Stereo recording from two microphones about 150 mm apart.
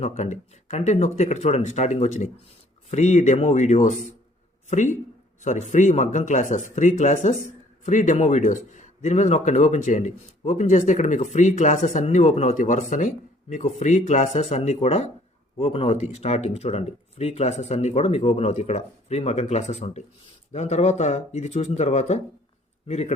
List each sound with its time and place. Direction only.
0.0 s a man's voice: 50° left (ahead or behind)